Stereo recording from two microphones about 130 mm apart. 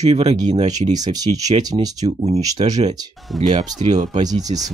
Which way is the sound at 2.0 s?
55° right (ahead or behind).